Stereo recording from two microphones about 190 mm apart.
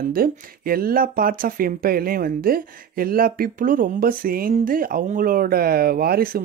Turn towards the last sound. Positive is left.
turn(degrees=-50)  # may be behind; listen again after turning